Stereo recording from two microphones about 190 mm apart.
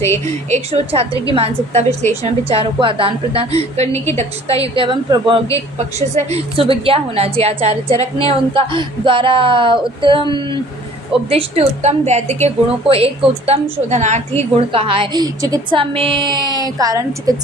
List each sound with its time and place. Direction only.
0.5 s a woman's voice: 30° right (ahead or behind)